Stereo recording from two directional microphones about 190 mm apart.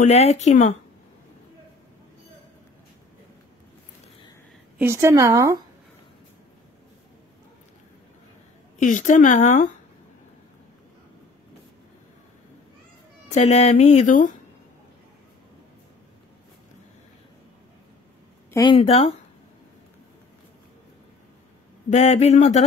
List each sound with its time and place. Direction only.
0.0 s speech: 35° left (ahead or behind)
4.7 s speech: 15° right (ahead or behind)
8.7 s speech: 40° left (ahead or behind)
13.3 s speech: 35° left (ahead or behind)
18.5 s speech: 25° left (ahead or behind)
21.9 s speech: 35° left (ahead or behind)